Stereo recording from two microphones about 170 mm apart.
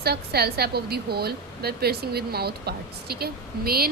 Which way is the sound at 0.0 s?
70° right (ahead or behind).